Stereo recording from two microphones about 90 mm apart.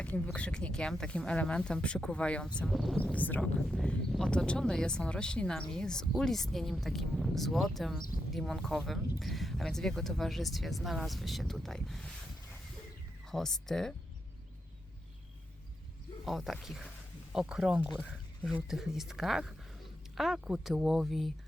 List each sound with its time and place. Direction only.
0.3 s speech: 10° left (ahead or behind)
2.6 s speech: centre (ahead or behind)
3.0 s speech: 15° left (ahead or behind)
3.4 s speech: centre (ahead or behind)
13.3 s speech: 5° left (ahead or behind)
16.2 s speech: centre (ahead or behind)